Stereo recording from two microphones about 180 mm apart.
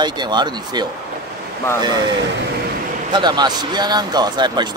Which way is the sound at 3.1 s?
25° right (ahead or behind).